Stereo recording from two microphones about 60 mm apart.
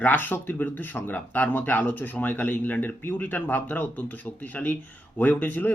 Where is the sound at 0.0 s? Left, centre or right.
Left.